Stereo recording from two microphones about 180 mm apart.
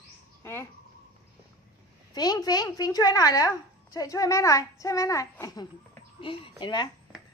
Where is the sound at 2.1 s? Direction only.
20° left (ahead or behind).